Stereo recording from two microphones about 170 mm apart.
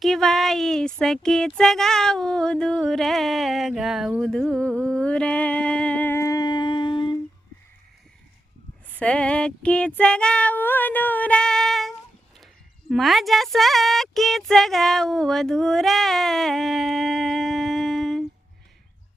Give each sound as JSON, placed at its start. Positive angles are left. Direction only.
{"t": 0.0, "sound": "child singing", "side_deg": 0}
{"t": 9.0, "sound": "female singing", "side_deg": 5}
{"t": 12.9, "sound": "speech", "side_deg": 0}